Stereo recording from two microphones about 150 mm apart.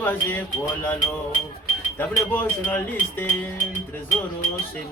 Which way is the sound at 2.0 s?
10° left (ahead or behind).